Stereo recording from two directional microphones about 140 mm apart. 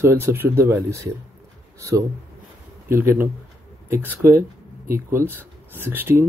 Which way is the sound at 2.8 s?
15° right (ahead or behind).